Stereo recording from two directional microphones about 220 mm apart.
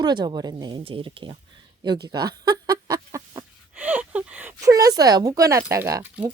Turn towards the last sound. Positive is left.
turn(degrees=-10)  # may be behind; listen again after turning